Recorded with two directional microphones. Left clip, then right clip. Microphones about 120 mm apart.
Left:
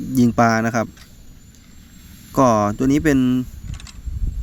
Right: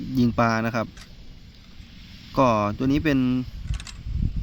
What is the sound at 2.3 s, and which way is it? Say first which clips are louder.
Speech: left 5 dB; 35° left (ahead or behind).